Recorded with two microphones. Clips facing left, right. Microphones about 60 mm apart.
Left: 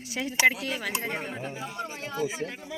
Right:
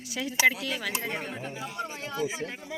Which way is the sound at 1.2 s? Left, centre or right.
Centre.